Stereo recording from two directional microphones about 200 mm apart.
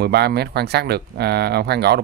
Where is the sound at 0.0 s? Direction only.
55° right (ahead or behind).